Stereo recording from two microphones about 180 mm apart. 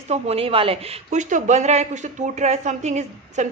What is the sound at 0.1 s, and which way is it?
A woman's voice, 35° right (ahead or behind).